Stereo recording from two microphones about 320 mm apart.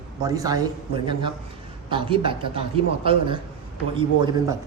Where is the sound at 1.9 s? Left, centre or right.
Centre.